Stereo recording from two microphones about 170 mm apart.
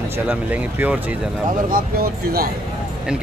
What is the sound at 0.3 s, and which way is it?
Speech, 10° right (ahead or behind).